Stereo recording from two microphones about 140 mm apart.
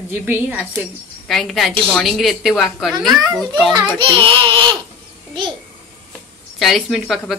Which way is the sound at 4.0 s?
40° right (ahead or behind).